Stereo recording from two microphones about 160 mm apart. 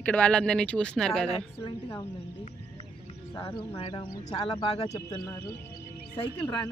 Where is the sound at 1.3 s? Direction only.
35° left (ahead or behind).